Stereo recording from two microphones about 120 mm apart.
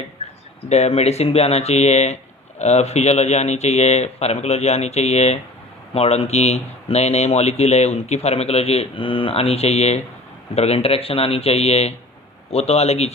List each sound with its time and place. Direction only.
0.6 s speech: 60° left (ahead or behind)